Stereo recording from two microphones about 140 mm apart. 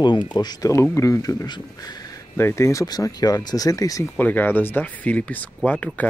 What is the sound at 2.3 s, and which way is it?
Speech, 20° left (ahead or behind).